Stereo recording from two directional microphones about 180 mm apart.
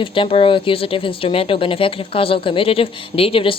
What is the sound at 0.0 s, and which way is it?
Speech, 30° left (ahead or behind).